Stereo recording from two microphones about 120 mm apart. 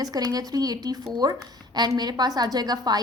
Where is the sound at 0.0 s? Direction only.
30° right (ahead or behind).